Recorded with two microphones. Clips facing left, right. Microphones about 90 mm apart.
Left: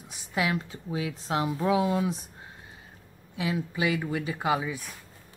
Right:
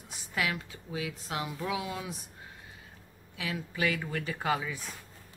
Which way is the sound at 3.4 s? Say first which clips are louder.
Left 4 dB; 20° left (ahead or behind).